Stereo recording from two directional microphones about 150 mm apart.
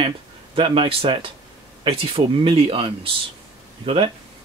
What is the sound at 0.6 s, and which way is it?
Speech, 40° right (ahead or behind).